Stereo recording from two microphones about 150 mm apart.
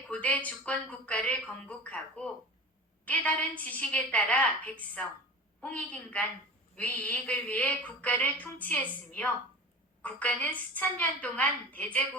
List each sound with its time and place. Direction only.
0.1 s a woman's voice: 10° left (ahead or behind)